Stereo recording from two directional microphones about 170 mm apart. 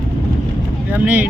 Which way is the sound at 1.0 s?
10° right (ahead or behind).